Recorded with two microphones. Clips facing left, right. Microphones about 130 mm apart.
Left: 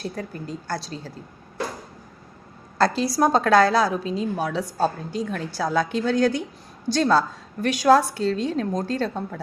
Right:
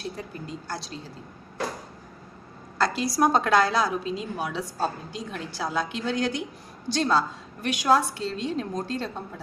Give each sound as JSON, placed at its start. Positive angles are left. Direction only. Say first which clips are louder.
{"t": 0.2, "sound": "a woman's voice", "louder": "left 4 dB", "side_deg": 40}
{"t": 2.7, "sound": "a woman's voice", "louder": "left 4 dB", "side_deg": 35}